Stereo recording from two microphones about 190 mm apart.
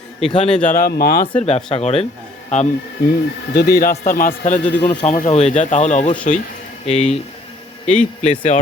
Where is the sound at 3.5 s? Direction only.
55° left (ahead or behind).